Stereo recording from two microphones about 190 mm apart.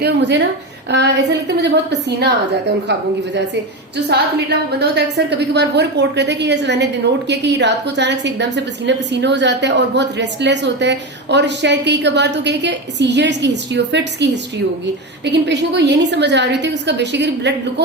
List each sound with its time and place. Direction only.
0.9 s a woman's voice: 65° right (ahead or behind)
4.1 s a woman's voice: 60° right (ahead or behind)
15.3 s a woman's voice: 65° right (ahead or behind)